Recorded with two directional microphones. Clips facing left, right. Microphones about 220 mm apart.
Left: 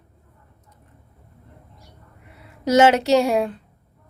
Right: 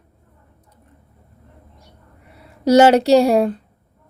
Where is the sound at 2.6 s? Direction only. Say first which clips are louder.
Right 4 dB; 35° right (ahead or behind).